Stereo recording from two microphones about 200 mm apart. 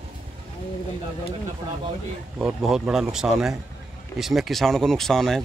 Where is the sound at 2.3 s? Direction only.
Centre (ahead or behind).